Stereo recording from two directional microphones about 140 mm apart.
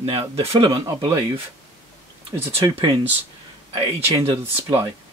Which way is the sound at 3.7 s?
45° right (ahead or behind).